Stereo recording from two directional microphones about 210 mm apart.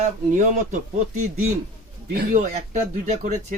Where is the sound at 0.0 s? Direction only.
35° right (ahead or behind).